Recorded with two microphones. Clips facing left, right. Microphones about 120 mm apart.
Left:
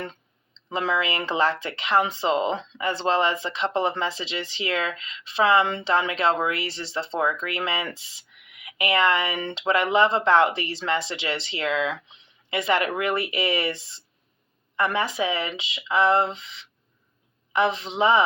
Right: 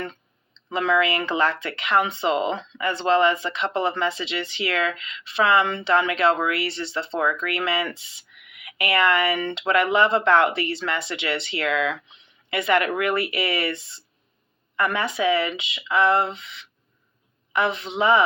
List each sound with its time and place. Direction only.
0.7 s speech: 25° left (ahead or behind)